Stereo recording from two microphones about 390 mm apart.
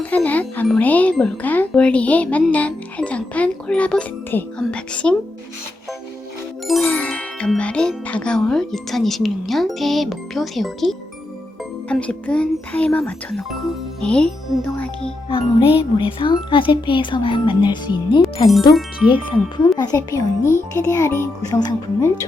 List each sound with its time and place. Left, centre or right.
0.0 s speech: centre
6.7 s speech: centre